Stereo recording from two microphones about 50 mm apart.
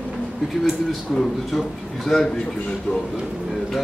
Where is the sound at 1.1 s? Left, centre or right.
Centre.